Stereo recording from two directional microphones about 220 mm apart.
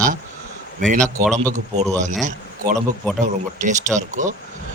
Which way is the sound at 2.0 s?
35° right (ahead or behind).